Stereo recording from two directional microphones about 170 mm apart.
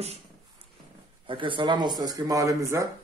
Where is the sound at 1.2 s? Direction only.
30° right (ahead or behind).